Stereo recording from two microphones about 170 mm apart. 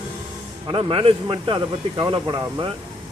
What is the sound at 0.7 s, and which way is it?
Speech, 30° right (ahead or behind).